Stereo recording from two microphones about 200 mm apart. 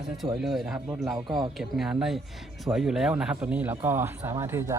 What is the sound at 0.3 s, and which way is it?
A man's voice, centre (ahead or behind).